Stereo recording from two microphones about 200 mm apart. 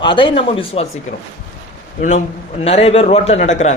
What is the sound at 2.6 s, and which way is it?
Speech, 30° left (ahead or behind).